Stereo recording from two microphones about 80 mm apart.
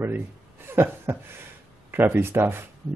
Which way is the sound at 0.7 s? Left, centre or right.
Right.